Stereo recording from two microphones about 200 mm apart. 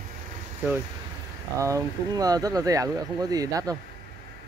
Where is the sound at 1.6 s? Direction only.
15° right (ahead or behind).